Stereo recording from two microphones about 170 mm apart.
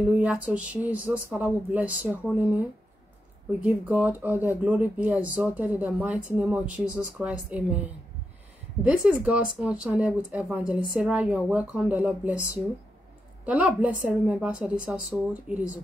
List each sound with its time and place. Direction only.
0.0 s speech: 5° right (ahead or behind)
3.6 s speech: 10° right (ahead or behind)
8.8 s speech: 5° right (ahead or behind)
13.5 s speech: 10° right (ahead or behind)